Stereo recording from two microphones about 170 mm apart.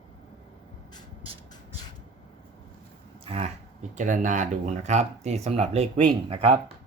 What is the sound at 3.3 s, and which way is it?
Speech, 40° right (ahead or behind).